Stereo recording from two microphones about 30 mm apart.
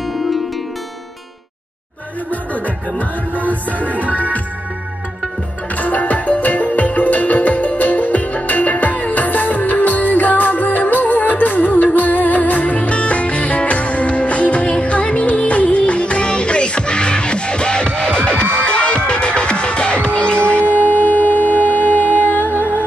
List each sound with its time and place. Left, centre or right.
3.9 s music: right
5.8 s music: left
20.6 s music: right
20.9 s music: left